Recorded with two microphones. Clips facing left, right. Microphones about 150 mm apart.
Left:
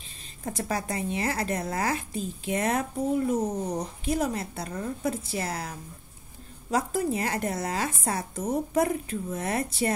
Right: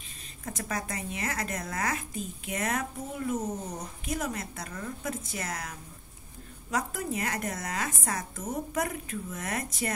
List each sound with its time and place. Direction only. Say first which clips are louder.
0.4 s speech: left 4 dB; 35° left (ahead or behind)